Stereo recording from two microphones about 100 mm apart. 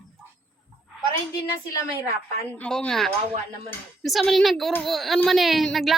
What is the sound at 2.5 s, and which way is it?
A woman's voice, 10° left (ahead or behind).